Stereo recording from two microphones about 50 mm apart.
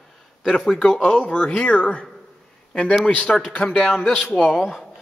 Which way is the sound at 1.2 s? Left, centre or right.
Left.